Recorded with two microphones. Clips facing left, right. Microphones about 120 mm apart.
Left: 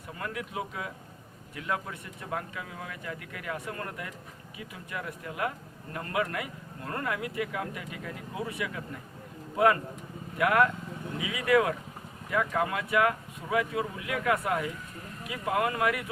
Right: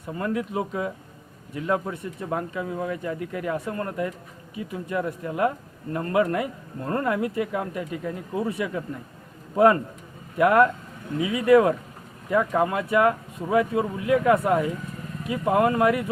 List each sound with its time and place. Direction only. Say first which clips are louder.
0.1 s speech: right 9 dB; 35° right (ahead or behind)
10.3 s speech: right 7 dB; 35° right (ahead or behind)